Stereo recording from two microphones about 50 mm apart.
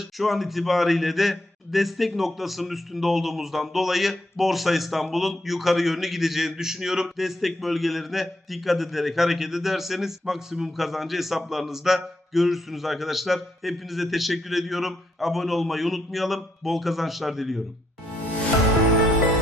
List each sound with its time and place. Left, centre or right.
0.0 s a man's voice: centre